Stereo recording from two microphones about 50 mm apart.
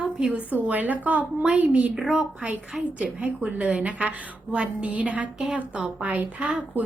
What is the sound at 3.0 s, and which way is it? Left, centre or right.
A woman's voice, right.